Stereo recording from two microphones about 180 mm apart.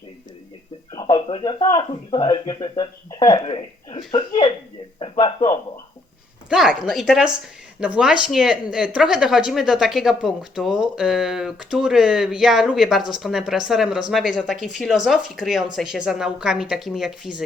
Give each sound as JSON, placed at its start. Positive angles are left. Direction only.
{"t": 0.9, "sound": "speech", "side_deg": 30}
{"t": 4.9, "sound": "a sound", "side_deg": 30}
{"t": 6.5, "sound": "speech", "side_deg": 0}